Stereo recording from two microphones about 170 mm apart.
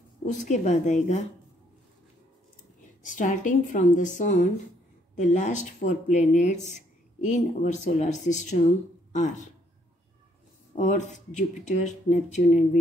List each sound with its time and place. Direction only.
0.2 s speech: 45° left (ahead or behind)
3.0 s speech: 50° left (ahead or behind)
10.7 s speech: 45° left (ahead or behind)